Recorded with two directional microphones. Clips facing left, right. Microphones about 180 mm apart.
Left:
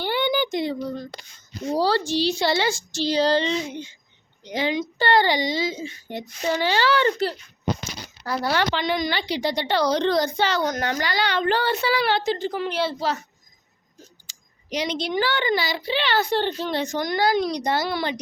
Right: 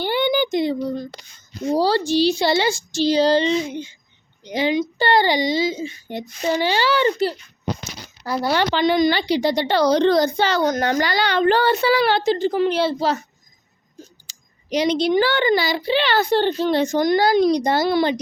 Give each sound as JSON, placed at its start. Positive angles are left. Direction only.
{"t": 0.0, "sound": "a sound", "side_deg": -15}
{"t": 1.7, "sound": "a child's voice", "side_deg": -10}
{"t": 8.7, "sound": "a child's voice", "side_deg": -35}
{"t": 14.3, "sound": "a child's voice", "side_deg": -35}